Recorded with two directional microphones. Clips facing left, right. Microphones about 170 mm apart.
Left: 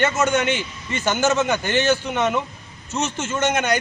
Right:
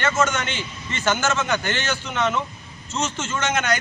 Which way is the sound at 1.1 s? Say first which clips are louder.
Left 3 dB; 15° left (ahead or behind).